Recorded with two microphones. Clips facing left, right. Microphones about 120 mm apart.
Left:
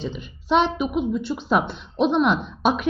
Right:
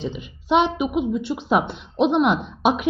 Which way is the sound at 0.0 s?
15° right (ahead or behind).